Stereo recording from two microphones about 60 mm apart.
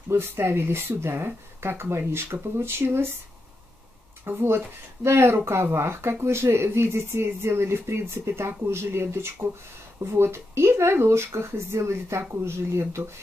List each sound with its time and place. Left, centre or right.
0.1 s speech: right
4.2 s speech: right